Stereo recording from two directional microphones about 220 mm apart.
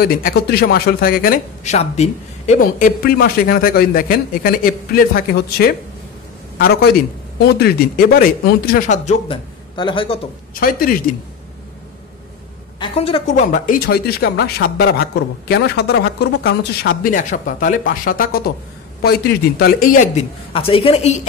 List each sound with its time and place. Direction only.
0.0 s a woman's voice: 45° left (ahead or behind)
9.8 s a man's voice: 20° left (ahead or behind)
10.5 s a woman's voice: 40° left (ahead or behind)
12.7 s a woman's voice: 25° left (ahead or behind)